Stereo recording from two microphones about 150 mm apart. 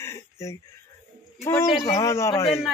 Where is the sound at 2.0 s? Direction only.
20° left (ahead or behind).